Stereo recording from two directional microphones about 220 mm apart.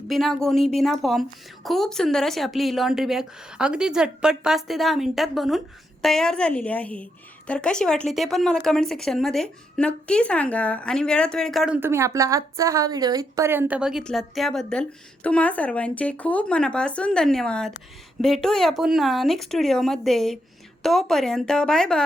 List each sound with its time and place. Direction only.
0.1 s a woman's voice: centre (ahead or behind)